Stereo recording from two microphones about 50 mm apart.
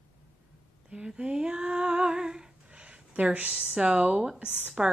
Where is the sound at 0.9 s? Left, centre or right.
Centre.